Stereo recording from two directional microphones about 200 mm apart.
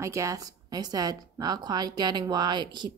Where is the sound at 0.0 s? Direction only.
15° right (ahead or behind).